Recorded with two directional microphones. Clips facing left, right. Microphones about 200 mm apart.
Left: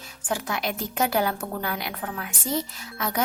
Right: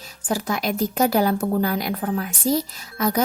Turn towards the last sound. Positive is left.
turn(degrees=-40)  # may be behind; listen again after turning